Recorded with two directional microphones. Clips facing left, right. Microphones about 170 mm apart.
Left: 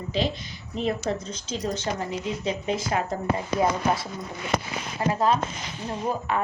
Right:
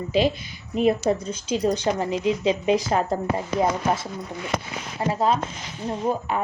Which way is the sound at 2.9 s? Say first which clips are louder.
Right 3 dB; 40° right (ahead or behind).